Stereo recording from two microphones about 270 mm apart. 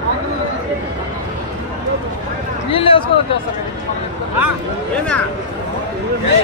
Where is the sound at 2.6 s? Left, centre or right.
Centre.